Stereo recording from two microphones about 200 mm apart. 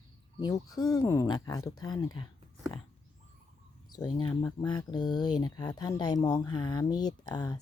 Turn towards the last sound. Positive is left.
turn(degrees=20)  # may be behind; listen again after turning